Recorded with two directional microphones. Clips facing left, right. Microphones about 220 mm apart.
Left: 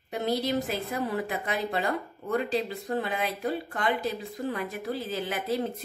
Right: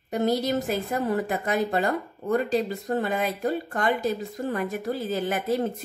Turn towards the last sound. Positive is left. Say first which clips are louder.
# right 4 dB
turn(degrees=-45)  # may be behind; listen again after turning